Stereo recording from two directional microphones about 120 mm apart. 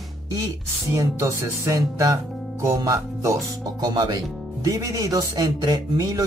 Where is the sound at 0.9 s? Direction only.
25° right (ahead or behind).